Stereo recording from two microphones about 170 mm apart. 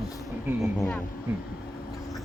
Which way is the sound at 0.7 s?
5° left (ahead or behind).